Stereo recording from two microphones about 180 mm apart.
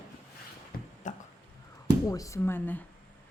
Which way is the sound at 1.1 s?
45° left (ahead or behind).